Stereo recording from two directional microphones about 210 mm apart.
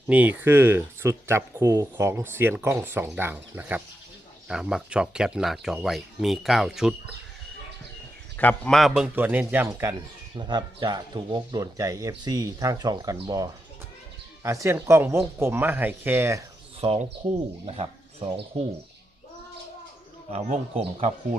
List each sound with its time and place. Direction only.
0.1 s speech: 5° right (ahead or behind)
8.4 s speech: 5° left (ahead or behind); by 16.4 s 10° right (ahead or behind)
16.8 s speech: 30° right (ahead or behind)
20.3 s speech: 30° right (ahead or behind)